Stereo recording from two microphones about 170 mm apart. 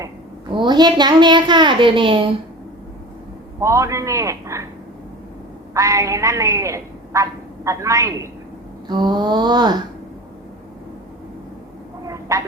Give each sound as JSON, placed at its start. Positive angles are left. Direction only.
{"t": 0.5, "sound": "a woman's voice", "side_deg": -25}
{"t": 3.6, "sound": "a man's voice", "side_deg": -20}
{"t": 5.7, "sound": "a woman's voice", "side_deg": -20}
{"t": 12.0, "sound": "a sound", "side_deg": -20}